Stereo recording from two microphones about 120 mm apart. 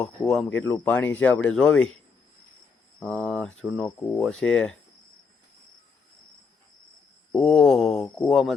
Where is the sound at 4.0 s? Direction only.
15° left (ahead or behind).